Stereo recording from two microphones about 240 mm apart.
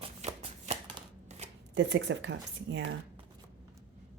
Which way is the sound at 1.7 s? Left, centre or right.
Right.